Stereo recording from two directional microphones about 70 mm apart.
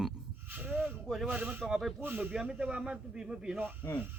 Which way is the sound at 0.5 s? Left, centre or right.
Right.